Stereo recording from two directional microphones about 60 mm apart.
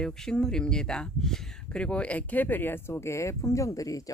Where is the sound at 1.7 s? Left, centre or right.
Centre.